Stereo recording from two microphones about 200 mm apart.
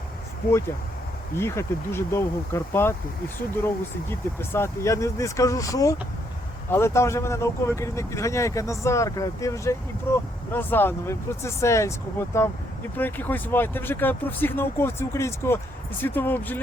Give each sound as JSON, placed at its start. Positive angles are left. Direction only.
{"t": 1.4, "sound": "speech", "side_deg": 15}
{"t": 4.1, "sound": "speech", "side_deg": 10}